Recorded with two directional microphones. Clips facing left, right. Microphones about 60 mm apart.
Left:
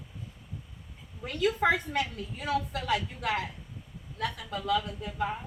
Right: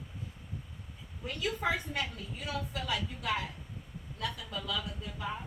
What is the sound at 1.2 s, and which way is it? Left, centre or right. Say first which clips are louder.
Speech: left 7 dB; left.